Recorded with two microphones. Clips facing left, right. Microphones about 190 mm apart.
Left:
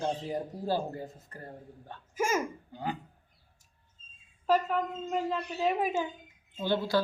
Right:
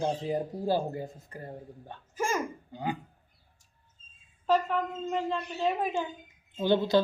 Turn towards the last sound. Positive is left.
turn(degrees=-20)  # may be behind; listen again after turning